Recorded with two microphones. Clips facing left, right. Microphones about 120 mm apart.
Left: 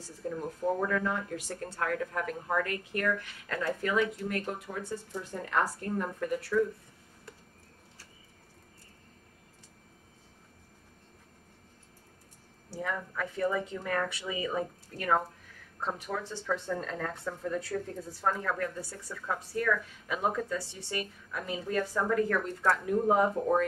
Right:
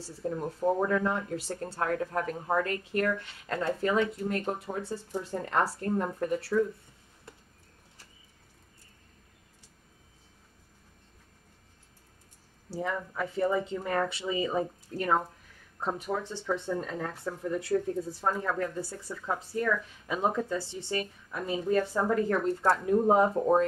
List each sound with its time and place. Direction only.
0.0 s a woman's voice: 30° right (ahead or behind)
12.6 s speech: 25° right (ahead or behind)
18.6 s speech: 25° right (ahead or behind)